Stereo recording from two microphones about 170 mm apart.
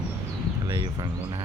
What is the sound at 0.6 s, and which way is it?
Speech, 25° right (ahead or behind).